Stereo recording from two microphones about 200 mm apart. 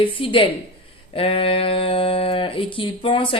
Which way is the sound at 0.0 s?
25° left (ahead or behind).